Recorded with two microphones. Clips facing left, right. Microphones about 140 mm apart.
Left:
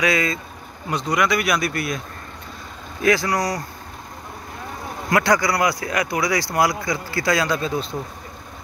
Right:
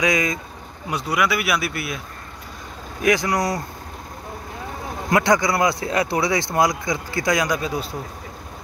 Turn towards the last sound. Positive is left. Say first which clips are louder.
# left 1 dB
turn(degrees=-10)  # may be behind; listen again after turning